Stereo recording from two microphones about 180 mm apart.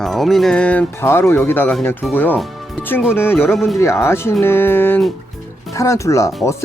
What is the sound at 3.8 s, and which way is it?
Speech, 15° left (ahead or behind).